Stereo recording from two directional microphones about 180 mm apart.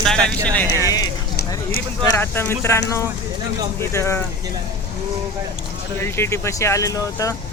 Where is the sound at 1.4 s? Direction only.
55° left (ahead or behind).